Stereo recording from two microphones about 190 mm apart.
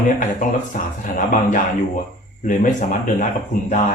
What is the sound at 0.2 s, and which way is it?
Speech, 45° left (ahead or behind).